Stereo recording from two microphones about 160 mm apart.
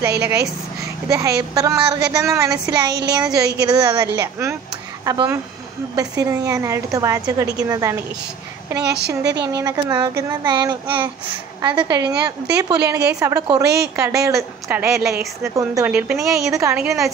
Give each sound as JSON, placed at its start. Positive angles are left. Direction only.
{"t": 0.7, "sound": "a child's voice", "side_deg": -20}
{"t": 8.8, "sound": "a woman's voice", "side_deg": -90}
{"t": 9.5, "sound": "a woman's voice", "side_deg": -20}
{"t": 16.4, "sound": "speech", "side_deg": -20}
{"t": 16.8, "sound": "a woman's voice", "side_deg": 0}